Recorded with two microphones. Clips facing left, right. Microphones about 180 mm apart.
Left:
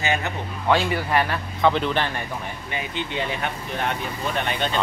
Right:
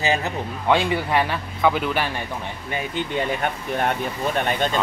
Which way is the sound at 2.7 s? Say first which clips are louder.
Right 4 dB; 45° right (ahead or behind).